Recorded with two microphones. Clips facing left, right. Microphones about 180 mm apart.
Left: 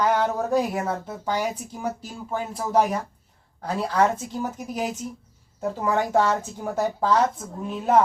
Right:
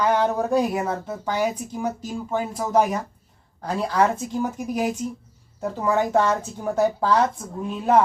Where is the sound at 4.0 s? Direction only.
10° right (ahead or behind).